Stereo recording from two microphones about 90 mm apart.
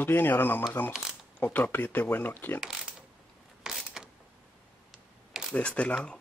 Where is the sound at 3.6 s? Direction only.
5° right (ahead or behind).